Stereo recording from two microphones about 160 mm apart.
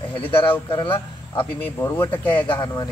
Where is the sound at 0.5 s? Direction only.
30° left (ahead or behind).